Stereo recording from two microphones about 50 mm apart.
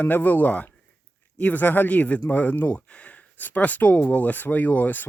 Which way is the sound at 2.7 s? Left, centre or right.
Left.